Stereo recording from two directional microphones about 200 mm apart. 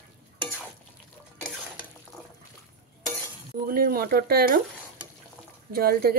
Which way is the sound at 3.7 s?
50° right (ahead or behind).